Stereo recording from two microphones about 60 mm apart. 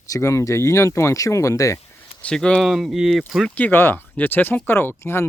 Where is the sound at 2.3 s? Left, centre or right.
Centre.